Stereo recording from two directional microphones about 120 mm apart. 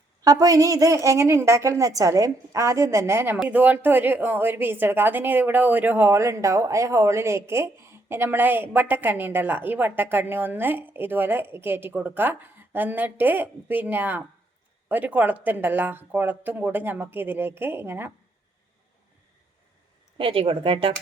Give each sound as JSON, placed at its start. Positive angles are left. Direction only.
{"t": 0.2, "sound": "a woman's voice", "side_deg": -30}
{"t": 20.1, "sound": "speech", "side_deg": -50}